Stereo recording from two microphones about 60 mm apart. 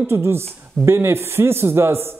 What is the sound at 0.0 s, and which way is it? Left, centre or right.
A man's voice, right.